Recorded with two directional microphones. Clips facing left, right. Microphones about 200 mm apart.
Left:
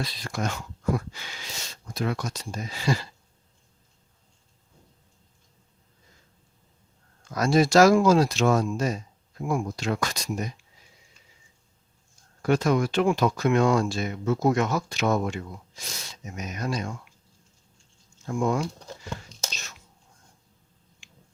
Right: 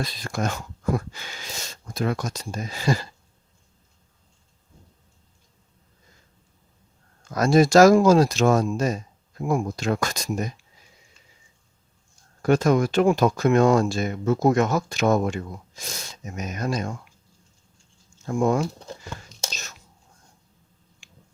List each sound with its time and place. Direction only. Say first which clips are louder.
0.0 s speech: right 3 dB; 45° right (ahead or behind)
7.3 s speech: right 4 dB; 45° right (ahead or behind)
12.4 s speech: right 3 dB; 45° right (ahead or behind)
18.3 s speech: right 4 dB; 45° right (ahead or behind)
19.3 s whispering: right 2 dB; centre (ahead or behind)